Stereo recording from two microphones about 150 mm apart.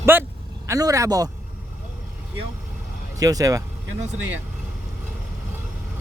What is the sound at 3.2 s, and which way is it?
Speech, 25° right (ahead or behind).